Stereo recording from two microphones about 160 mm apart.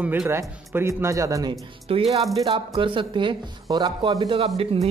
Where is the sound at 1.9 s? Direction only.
40° right (ahead or behind).